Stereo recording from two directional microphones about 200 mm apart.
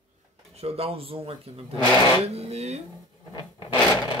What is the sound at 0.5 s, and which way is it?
Speech, 30° right (ahead or behind).